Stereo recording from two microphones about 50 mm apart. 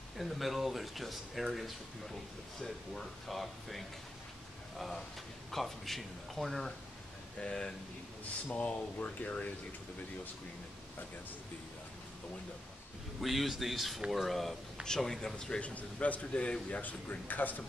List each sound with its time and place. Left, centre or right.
0.2 s speech: centre
7.3 s a man's voice: centre
8.5 s a man's voice: left
13.2 s a man's voice: centre
15.6 s a man's voice: left